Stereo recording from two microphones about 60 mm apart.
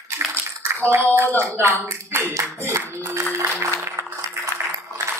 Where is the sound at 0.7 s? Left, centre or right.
Right.